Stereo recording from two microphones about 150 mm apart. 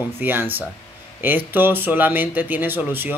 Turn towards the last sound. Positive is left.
turn(degrees=-15)  # may be behind; listen again after turning